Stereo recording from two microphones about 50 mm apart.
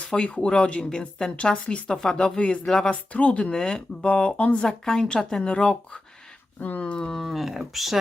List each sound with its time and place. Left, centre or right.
0.0 s speech: left
2.9 s speech: left
3.4 s speech: centre
6.6 s speech: left
7.1 s speech: centre